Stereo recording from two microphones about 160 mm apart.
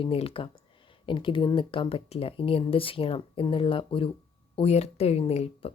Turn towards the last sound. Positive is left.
turn(degrees=40)  # may be behind; listen again after turning